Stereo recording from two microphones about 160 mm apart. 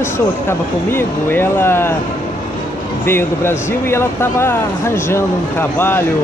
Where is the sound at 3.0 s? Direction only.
15° left (ahead or behind).